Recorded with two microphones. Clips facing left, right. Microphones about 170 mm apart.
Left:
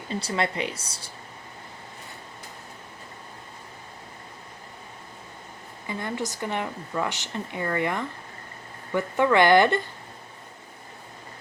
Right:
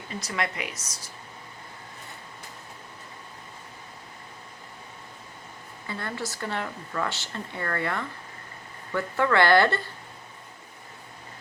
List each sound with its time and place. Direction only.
0.1 s speech: 30° left (ahead or behind)
5.9 s speech: 15° left (ahead or behind)